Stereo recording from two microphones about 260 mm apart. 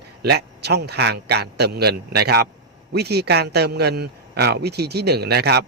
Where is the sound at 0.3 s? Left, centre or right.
Right.